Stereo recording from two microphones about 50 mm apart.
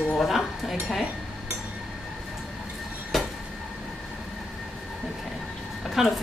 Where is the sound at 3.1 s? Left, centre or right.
Centre.